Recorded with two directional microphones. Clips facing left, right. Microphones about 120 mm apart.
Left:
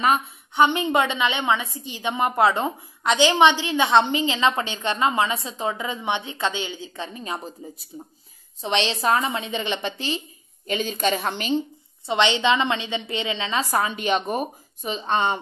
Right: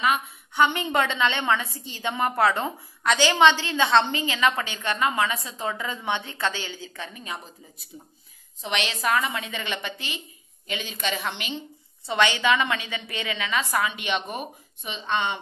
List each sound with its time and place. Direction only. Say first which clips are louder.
0.0 s a woman's voice: left 3 dB; 35° left (ahead or behind)
0.6 s a woman's voice: left 3 dB; 20° left (ahead or behind)
8.6 s a woman's voice: left 4 dB; 30° left (ahead or behind)
10.7 s a woman's voice: left 7 dB; 40° left (ahead or behind)
12.1 s a woman's voice: left 2 dB; 25° left (ahead or behind); by 15.3 s 40° left (ahead or behind)